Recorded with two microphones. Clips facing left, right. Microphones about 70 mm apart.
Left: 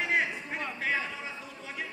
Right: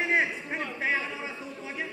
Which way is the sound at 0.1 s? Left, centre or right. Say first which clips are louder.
Right 3 dB; right.